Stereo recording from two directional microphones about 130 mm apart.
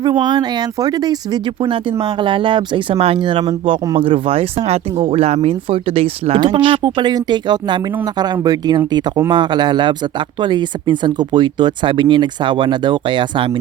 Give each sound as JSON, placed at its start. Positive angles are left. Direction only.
{"t": 0.0, "sound": "speech", "side_deg": -35}
{"t": 1.6, "sound": "speech", "side_deg": -40}